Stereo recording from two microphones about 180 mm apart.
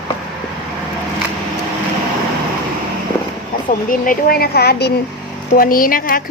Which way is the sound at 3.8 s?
50° left (ahead or behind).